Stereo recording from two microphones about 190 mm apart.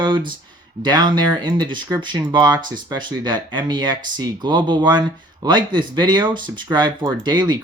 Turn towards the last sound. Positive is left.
turn(degrees=-25)  # may be behind; listen again after turning